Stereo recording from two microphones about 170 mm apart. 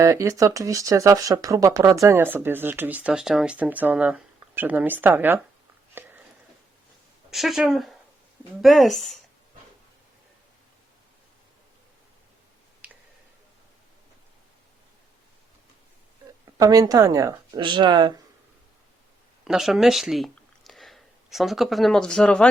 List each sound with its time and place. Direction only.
0.0 s speech: 15° right (ahead or behind)
5.9 s a sound: 10° right (ahead or behind)
7.3 s speech: centre (ahead or behind)
12.8 s a sound: 5° right (ahead or behind)
16.5 s speech: 20° right (ahead or behind)
19.5 s speech: centre (ahead or behind)